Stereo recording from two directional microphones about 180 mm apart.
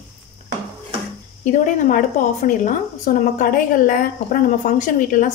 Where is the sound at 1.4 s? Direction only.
45° left (ahead or behind).